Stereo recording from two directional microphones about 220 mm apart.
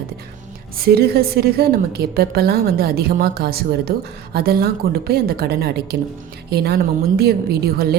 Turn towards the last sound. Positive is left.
turn(degrees=-45)  # may be behind; listen again after turning